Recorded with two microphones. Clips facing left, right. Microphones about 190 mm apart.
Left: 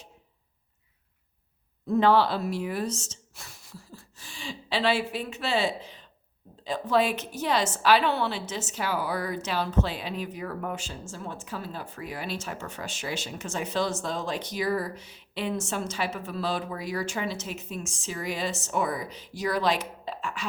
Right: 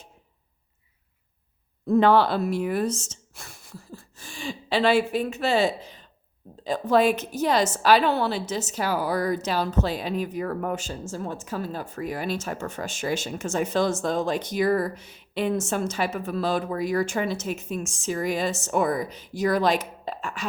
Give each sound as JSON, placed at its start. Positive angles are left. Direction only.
{"t": 1.9, "sound": "a woman's voice", "side_deg": -55}